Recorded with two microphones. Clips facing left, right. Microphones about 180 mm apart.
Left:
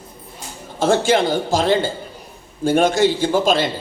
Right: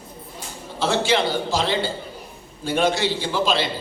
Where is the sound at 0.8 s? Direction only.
50° left (ahead or behind).